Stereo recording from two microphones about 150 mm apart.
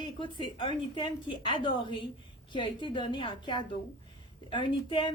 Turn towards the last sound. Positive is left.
turn(degrees=35)  # may be behind; listen again after turning